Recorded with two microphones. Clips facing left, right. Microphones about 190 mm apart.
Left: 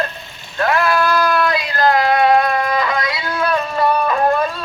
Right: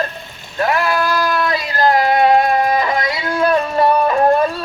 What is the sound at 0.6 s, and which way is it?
Vehicle, 10° right (ahead or behind).